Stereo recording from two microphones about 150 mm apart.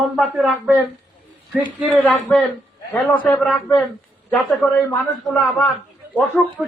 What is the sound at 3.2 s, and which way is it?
Speech, 5° left (ahead or behind).